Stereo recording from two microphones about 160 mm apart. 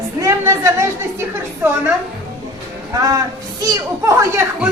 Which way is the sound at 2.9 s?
25° right (ahead or behind).